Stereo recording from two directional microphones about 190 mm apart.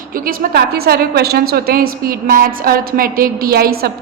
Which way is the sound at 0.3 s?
55° right (ahead or behind).